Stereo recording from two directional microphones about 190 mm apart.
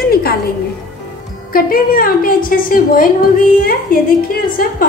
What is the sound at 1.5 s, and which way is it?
A woman's voice, 50° left (ahead or behind).